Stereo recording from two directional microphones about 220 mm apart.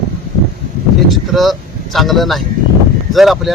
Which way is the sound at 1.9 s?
Centre (ahead or behind).